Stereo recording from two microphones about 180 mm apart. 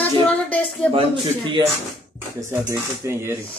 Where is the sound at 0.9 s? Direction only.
25° right (ahead or behind).